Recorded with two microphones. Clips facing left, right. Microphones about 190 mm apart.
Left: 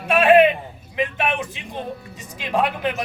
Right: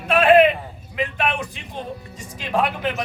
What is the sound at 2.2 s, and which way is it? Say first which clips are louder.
Speech: even; 15° left (ahead or behind).